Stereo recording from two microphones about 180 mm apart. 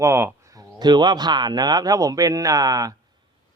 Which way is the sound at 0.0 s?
15° right (ahead or behind).